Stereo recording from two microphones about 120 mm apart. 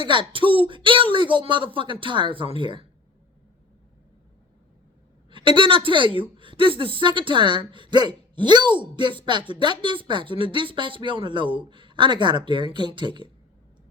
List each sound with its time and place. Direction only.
0.0 s speech: 45° right (ahead or behind)
5.3 s speech: 45° right (ahead or behind)